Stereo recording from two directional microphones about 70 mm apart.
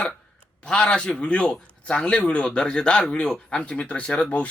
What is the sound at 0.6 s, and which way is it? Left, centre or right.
A man's voice, centre.